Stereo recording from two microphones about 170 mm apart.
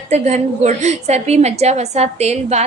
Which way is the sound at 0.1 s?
40° right (ahead or behind).